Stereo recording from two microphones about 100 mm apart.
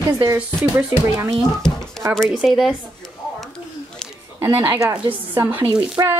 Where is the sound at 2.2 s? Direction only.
Centre (ahead or behind).